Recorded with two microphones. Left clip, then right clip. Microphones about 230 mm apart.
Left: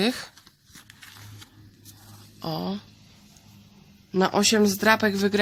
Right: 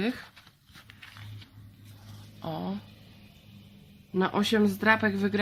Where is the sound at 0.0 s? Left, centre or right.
Left.